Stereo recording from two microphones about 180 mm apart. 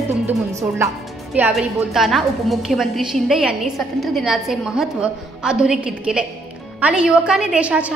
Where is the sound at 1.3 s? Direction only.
5° right (ahead or behind).